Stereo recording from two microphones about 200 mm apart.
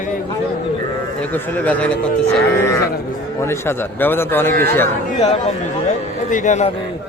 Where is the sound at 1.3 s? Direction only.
10° left (ahead or behind).